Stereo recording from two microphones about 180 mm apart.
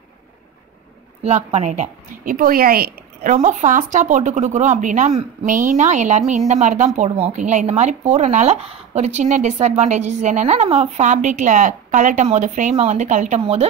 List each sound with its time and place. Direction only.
1.2 s a woman's voice: 40° right (ahead or behind); by 3.3 s 55° right (ahead or behind)
3.3 s speech: 40° right (ahead or behind)